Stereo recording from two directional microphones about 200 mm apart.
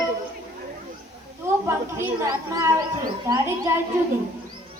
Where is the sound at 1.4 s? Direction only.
15° right (ahead or behind).